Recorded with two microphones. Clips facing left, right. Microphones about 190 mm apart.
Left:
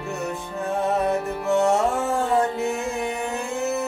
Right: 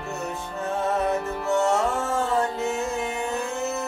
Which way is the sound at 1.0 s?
15° left (ahead or behind).